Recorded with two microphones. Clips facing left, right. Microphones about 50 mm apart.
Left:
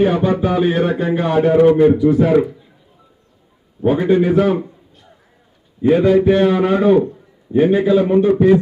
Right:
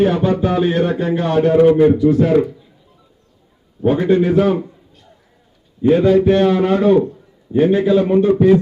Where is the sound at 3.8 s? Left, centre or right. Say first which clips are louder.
Even; centre.